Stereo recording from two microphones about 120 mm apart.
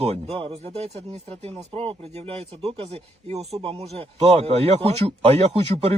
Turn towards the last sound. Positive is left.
turn(degrees=-55)  # may be behind; listen again after turning